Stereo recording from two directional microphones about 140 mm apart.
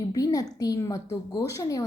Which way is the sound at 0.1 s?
25° left (ahead or behind).